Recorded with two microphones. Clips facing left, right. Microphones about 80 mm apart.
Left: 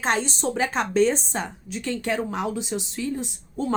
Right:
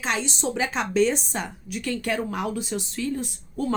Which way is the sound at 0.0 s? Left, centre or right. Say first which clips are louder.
Left 3 dB; left.